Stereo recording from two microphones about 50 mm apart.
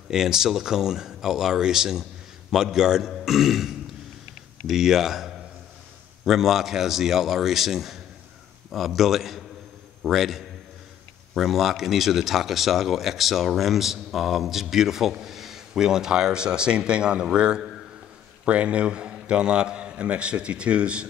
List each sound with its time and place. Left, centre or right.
0.1 s a man's voice: centre